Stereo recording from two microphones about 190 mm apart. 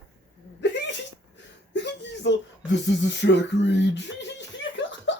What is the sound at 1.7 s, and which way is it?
Speech, 65° left (ahead or behind).